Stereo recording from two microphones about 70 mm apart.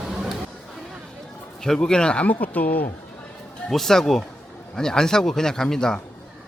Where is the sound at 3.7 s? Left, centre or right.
Centre.